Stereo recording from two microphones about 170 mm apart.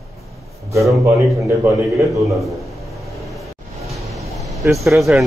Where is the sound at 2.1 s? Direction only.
Centre (ahead or behind).